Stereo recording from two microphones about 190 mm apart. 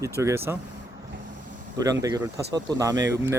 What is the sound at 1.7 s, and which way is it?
Speech, 15° right (ahead or behind).